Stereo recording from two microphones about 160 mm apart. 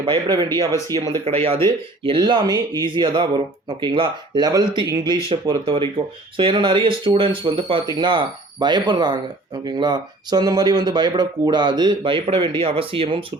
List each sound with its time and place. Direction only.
0.7 s speech: 15° left (ahead or behind)
1.2 s speech: 35° right (ahead or behind)